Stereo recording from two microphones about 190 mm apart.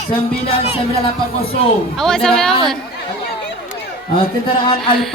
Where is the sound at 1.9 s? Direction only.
5° left (ahead or behind).